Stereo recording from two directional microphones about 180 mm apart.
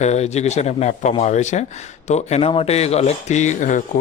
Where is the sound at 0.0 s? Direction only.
40° left (ahead or behind).